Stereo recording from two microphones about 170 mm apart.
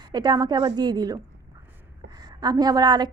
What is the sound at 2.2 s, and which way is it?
Speech, 25° right (ahead or behind).